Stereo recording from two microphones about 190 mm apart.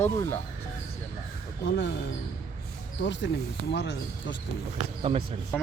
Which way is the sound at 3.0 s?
65° left (ahead or behind).